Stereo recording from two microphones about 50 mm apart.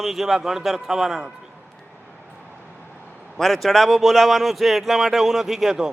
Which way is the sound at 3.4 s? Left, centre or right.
Centre.